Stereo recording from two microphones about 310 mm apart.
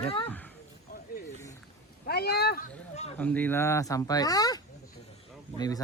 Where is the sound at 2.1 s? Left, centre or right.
Left.